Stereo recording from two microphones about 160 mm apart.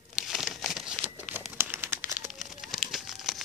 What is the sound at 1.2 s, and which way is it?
Crumpling, 10° right (ahead or behind).